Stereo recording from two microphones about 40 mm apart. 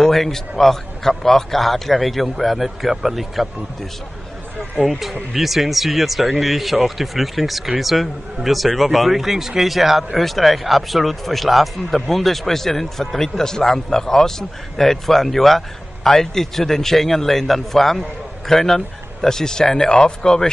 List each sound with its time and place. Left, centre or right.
0.0 s a man's voice: centre
4.8 s a man's voice: centre